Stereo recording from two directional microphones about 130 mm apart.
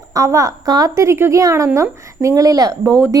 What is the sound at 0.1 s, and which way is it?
Speech, 25° right (ahead or behind).